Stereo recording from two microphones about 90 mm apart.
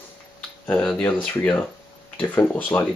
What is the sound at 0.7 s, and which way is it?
Speech, 20° left (ahead or behind).